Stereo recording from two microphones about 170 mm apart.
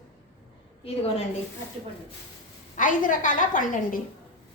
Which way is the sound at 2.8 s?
50° left (ahead or behind).